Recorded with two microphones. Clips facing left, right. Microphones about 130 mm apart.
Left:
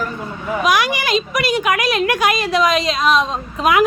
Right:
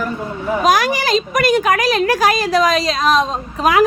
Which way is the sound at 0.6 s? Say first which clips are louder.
Right 2 dB; 40° right (ahead or behind).